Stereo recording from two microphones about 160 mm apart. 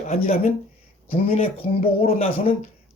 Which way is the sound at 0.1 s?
45° left (ahead or behind).